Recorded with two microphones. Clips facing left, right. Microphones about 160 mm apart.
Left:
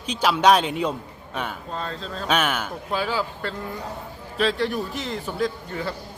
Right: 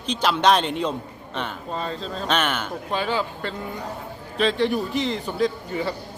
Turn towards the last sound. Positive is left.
turn(degrees=0)  # may be behind; listen again after turning